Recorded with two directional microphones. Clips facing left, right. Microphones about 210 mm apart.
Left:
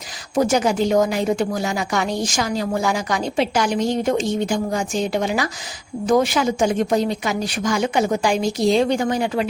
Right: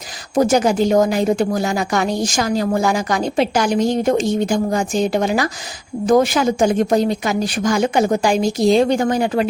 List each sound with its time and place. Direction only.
0.3 s a woman's voice: 45° right (ahead or behind)